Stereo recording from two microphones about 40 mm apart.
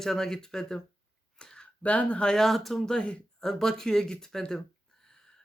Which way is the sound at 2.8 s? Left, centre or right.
Left.